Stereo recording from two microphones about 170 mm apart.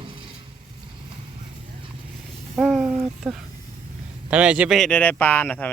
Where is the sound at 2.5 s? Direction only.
Centre (ahead or behind).